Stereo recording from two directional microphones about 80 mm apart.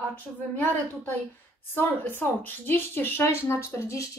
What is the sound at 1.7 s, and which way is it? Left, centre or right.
Speech, left.